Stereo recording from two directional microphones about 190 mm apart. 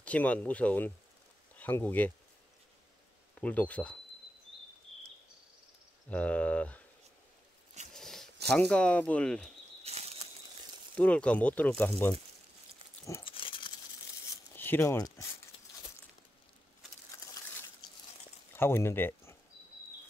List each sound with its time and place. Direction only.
0.0 s speech: 5° left (ahead or behind)
3.3 s speech: 5° left (ahead or behind)
6.0 s speech: 5° left (ahead or behind)
7.9 s a sound: centre (ahead or behind)
8.5 s speech: 5° left (ahead or behind)
9.8 s bird flight: 35° right (ahead or behind)
11.0 s speech: 5° left (ahead or behind)
13.2 s a sound: 25° left (ahead or behind)
14.3 s a sound: 10° left (ahead or behind)
18.5 s speech: 10° left (ahead or behind)